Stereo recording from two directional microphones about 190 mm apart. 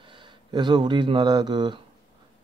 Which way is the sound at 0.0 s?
25° right (ahead or behind).